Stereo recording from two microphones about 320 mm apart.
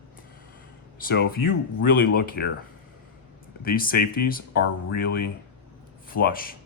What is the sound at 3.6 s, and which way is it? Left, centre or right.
Speech, left.